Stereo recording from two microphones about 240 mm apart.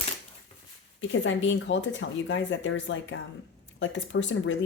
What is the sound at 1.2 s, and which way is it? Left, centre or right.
Speech, left.